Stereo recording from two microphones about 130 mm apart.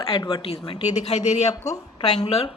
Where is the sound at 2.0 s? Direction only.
50° left (ahead or behind).